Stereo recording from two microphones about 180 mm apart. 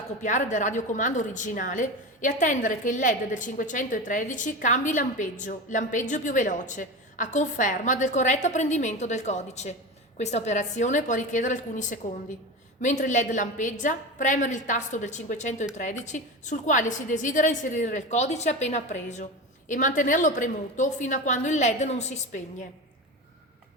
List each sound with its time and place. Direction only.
0.2 s a woman's voice: 45° left (ahead or behind)